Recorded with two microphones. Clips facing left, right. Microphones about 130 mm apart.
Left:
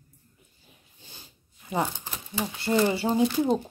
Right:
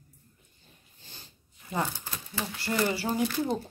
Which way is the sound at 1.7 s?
20° left (ahead or behind).